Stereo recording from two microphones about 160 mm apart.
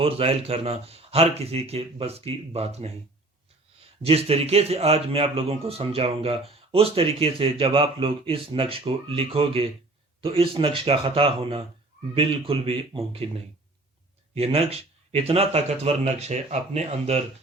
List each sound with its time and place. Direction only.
0.0 s speech: 40° right (ahead or behind)
4.0 s speech: 40° right (ahead or behind)
14.3 s speech: 40° right (ahead or behind)